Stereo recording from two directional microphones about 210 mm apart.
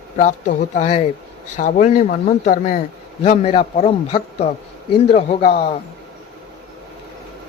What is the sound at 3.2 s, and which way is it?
A man's voice, 30° left (ahead or behind).